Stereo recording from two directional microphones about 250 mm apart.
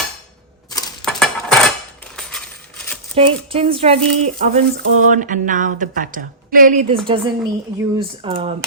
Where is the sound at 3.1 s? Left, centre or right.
Right.